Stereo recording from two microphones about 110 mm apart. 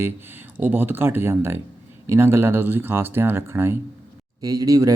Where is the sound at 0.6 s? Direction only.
20° right (ahead or behind).